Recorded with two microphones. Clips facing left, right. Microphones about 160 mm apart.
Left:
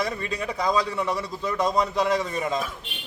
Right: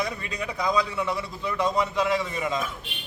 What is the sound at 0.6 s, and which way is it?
A man's voice, 35° left (ahead or behind).